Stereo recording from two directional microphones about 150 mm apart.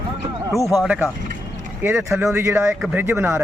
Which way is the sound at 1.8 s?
15° right (ahead or behind).